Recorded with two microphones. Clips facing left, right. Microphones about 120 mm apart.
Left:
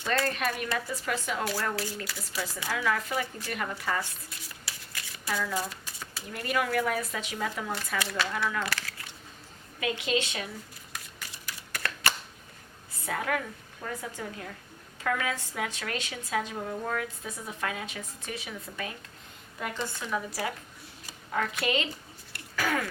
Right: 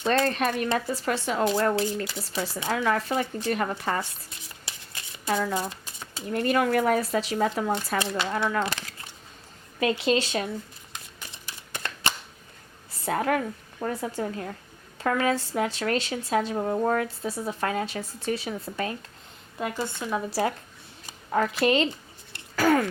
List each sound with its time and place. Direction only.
0.0 s speech: 25° right (ahead or behind)
1.7 s speech: 20° right (ahead or behind)
3.6 s speech: 40° right (ahead or behind)
4.3 s shuffling cards: 25° right (ahead or behind)
5.5 s pigeon: 25° right (ahead or behind)
6.3 s speech: 35° right (ahead or behind)
10.9 s a sound: 25° right (ahead or behind)
12.9 s a woman's voice: 40° right (ahead or behind)
19.6 s speech: 25° right (ahead or behind)
21.6 s speech: 35° right (ahead or behind)
22.3 s throat clearing: 35° right (ahead or behind)